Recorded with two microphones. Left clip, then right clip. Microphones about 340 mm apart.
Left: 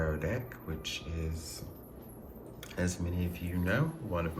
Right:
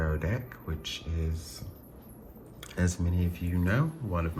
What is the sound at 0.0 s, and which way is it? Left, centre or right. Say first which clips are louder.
Music: even; centre.